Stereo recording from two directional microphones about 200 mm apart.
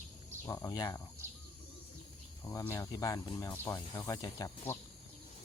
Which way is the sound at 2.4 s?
15° left (ahead or behind).